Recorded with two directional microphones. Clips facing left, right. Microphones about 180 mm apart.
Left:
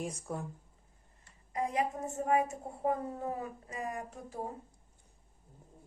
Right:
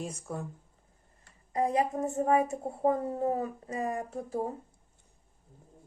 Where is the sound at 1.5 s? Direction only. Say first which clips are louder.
Right 5 dB; 35° right (ahead or behind).